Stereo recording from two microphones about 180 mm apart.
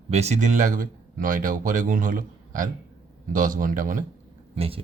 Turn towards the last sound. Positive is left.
turn(degrees=-35)  # may be behind; listen again after turning